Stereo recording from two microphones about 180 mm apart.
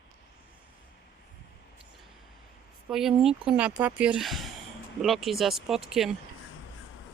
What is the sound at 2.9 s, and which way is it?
Speech, centre (ahead or behind).